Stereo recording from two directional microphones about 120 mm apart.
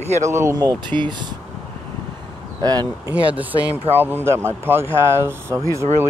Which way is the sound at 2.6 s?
35° right (ahead or behind).